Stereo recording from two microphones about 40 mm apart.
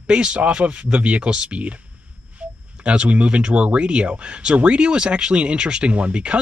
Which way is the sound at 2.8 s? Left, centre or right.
Right.